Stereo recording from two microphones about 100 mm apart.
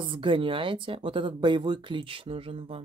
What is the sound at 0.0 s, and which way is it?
Speech, 60° right (ahead or behind).